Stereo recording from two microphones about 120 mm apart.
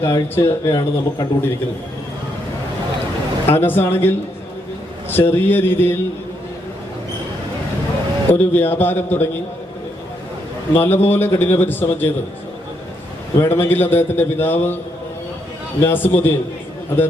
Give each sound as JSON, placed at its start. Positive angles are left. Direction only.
{"t": 0.0, "sound": "a man's voice", "side_deg": 25}
{"t": 3.4, "sound": "a man's voice", "side_deg": 20}
{"t": 8.3, "sound": "a man's voice", "side_deg": 15}
{"t": 10.8, "sound": "a man's voice", "side_deg": 20}
{"t": 13.4, "sound": "a man's voice", "side_deg": 20}
{"t": 15.8, "sound": "a man's voice", "side_deg": 15}